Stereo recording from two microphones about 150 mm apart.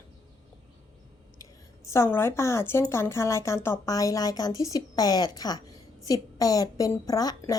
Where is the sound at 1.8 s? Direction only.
20° left (ahead or behind).